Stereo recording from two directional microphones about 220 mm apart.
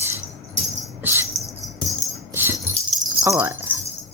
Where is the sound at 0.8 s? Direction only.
10° right (ahead or behind).